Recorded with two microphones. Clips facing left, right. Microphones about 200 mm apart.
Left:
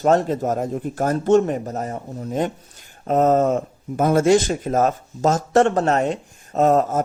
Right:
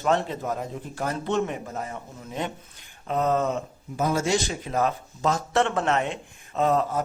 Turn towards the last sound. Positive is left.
turn(degrees=45)  # may be behind; listen again after turning